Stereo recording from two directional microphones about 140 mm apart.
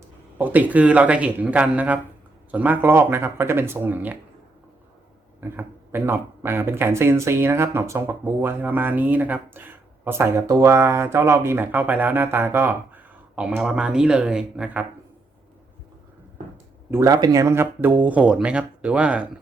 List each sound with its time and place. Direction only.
0.3 s speech: 10° right (ahead or behind)
5.4 s speech: 15° right (ahead or behind)
16.9 s speech: 25° right (ahead or behind)